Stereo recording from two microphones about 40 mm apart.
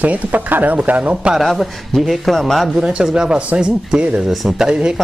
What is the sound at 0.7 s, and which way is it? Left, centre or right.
Speech, right.